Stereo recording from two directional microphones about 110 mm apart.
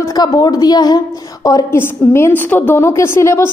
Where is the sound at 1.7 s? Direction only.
20° left (ahead or behind).